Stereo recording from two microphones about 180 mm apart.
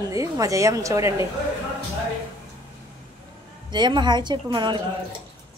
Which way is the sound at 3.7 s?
25° right (ahead or behind).